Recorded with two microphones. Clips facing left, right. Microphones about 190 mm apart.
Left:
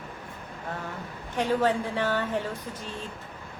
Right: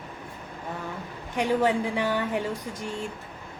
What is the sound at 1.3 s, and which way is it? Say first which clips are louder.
Speech: right 1 dB; 15° right (ahead or behind).